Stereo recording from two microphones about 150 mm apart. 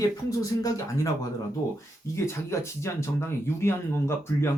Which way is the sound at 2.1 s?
20° left (ahead or behind).